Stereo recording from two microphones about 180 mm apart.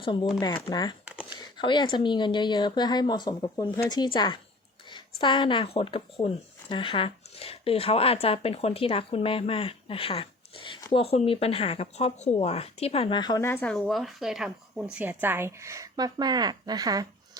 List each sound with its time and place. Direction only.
0.0 s speech: 25° left (ahead or behind); by 17.1 s 20° right (ahead or behind)